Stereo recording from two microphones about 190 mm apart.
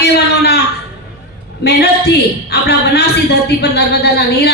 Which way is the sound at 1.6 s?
60° left (ahead or behind).